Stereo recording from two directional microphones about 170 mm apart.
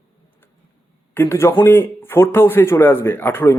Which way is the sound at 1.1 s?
15° left (ahead or behind).